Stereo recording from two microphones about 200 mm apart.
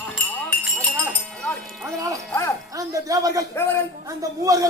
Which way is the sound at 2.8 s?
15° right (ahead or behind).